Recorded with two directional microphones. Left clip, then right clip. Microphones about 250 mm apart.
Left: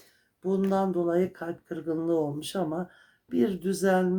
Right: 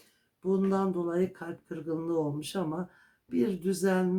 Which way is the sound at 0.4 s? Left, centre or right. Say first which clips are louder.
Left 2 dB; centre.